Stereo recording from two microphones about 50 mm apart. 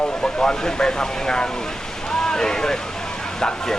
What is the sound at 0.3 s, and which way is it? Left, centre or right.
Speech, centre.